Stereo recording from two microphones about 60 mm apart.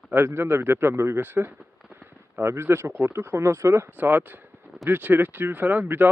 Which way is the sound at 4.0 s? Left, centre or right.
Right.